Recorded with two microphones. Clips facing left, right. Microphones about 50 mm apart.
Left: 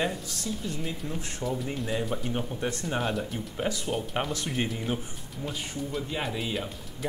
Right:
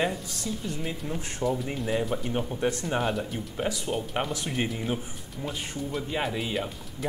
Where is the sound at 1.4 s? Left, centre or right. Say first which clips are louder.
Right 3 dB; centre.